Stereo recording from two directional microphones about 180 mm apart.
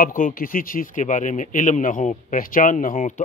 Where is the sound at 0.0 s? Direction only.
50° left (ahead or behind).